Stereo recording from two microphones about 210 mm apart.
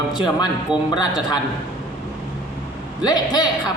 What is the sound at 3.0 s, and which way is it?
Speech, 20° left (ahead or behind).